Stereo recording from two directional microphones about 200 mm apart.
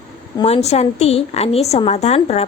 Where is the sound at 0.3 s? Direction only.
30° left (ahead or behind).